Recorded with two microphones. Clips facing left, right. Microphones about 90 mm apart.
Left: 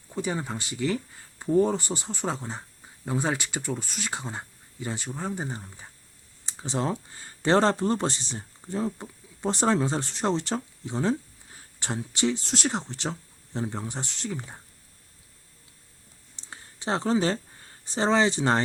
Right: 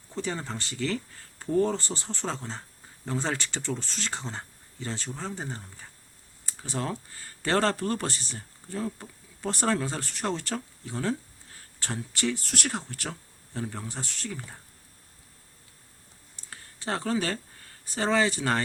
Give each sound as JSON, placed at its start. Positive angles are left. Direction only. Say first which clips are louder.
{"t": 0.1, "sound": "speech", "louder": "left 3 dB", "side_deg": 15}
{"t": 16.3, "sound": "a sound", "louder": "left 2 dB", "side_deg": 20}
{"t": 17.8, "sound": "speech", "louder": "left 2 dB", "side_deg": 25}